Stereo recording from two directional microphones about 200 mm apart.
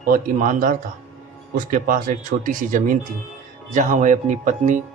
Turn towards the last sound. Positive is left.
turn(degrees=-40)  # may be behind; listen again after turning